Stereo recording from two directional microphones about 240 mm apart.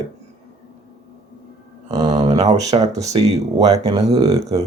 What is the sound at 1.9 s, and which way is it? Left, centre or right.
Speech, right.